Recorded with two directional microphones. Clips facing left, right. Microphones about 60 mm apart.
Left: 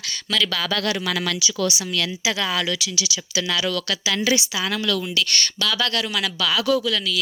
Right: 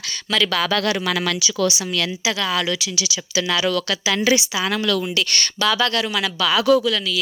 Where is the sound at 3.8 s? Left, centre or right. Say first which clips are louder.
Right 3 dB; right.